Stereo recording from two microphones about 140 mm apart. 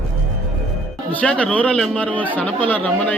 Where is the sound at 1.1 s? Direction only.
10° left (ahead or behind).